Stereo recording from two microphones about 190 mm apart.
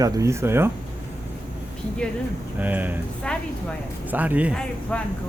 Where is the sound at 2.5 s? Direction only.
10° right (ahead or behind).